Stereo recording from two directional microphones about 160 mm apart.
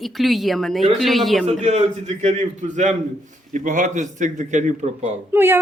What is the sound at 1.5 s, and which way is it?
A man's voice, 45° right (ahead or behind).